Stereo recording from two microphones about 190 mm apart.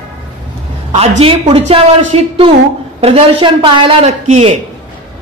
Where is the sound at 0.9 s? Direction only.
30° right (ahead or behind).